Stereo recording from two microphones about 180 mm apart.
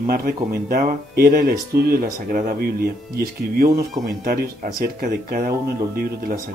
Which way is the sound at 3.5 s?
55° right (ahead or behind).